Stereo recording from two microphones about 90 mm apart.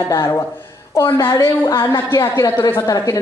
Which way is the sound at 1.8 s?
30° left (ahead or behind).